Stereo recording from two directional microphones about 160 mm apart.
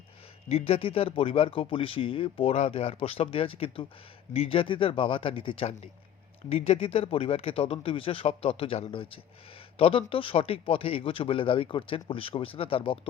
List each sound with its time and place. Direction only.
0.4 s speech: 35° left (ahead or behind)